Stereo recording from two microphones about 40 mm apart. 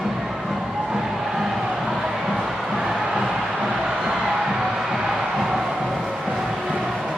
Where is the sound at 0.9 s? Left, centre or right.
Centre.